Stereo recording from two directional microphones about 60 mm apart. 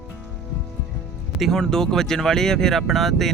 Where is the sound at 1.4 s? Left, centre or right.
Centre.